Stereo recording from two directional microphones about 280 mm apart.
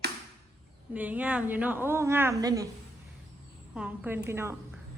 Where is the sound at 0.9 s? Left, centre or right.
Centre.